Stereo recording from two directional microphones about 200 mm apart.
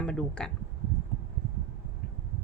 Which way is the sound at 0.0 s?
5° left (ahead or behind).